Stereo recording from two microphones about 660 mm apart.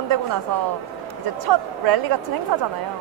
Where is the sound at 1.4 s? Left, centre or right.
Right.